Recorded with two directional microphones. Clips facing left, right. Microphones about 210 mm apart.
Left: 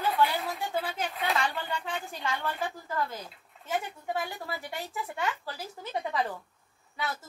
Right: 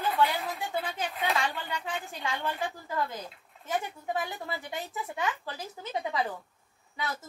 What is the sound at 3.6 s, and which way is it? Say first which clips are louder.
A woman's voice: even; 20° right (ahead or behind).